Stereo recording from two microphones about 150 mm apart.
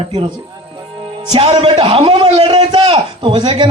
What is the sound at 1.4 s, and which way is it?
A man's voice, 40° right (ahead or behind).